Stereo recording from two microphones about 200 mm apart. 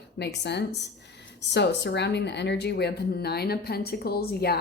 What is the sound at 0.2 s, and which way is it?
A woman's voice, 55° left (ahead or behind).